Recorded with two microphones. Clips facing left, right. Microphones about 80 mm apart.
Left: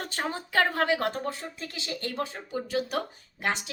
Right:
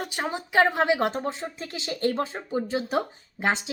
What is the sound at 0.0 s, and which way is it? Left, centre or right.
A woman's voice, centre.